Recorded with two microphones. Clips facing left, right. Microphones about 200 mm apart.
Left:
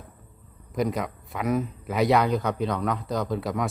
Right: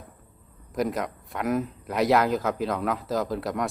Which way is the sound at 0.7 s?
Centre (ahead or behind).